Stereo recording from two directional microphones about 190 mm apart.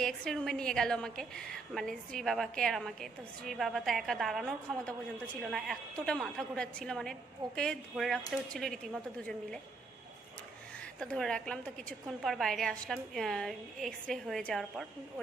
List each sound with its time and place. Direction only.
0.0 s a woman's voice: 5° left (ahead or behind)
11.0 s a woman's voice: 5° left (ahead or behind)